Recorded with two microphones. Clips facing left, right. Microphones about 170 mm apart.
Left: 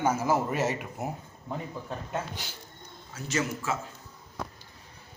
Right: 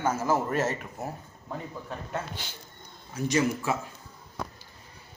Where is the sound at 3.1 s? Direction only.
15° right (ahead or behind).